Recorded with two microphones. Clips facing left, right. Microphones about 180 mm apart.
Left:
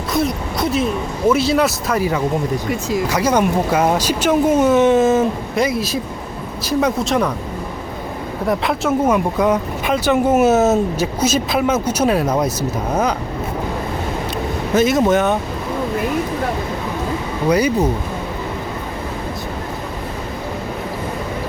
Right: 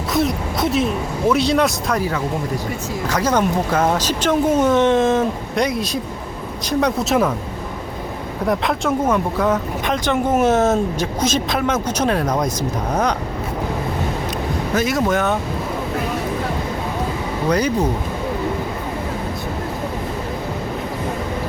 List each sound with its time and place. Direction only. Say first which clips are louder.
0.1 s speech: even; centre (ahead or behind)
3.1 s speech: even; 10° left (ahead or behind)
8.4 s speech: left 1 dB; 5° left (ahead or behind)
14.8 s speech: left 5 dB; 25° left (ahead or behind)
17.5 s speech: left 3 dB; 10° left (ahead or behind)